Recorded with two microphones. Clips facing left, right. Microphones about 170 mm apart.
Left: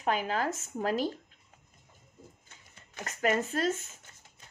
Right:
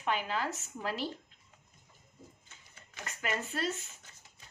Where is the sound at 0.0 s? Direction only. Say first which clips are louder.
Left 4 dB; 40° left (ahead or behind).